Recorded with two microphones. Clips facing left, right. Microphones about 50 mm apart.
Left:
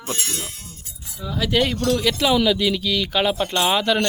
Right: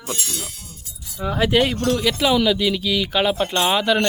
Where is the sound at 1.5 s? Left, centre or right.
Centre.